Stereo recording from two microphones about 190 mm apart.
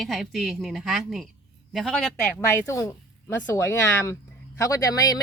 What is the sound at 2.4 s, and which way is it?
Speech, 15° left (ahead or behind).